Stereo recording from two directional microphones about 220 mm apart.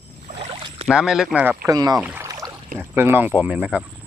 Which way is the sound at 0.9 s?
5° right (ahead or behind).